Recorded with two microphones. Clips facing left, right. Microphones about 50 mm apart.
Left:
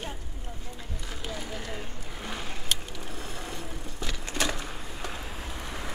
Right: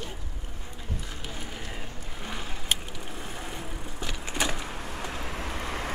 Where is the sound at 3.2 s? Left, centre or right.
Centre.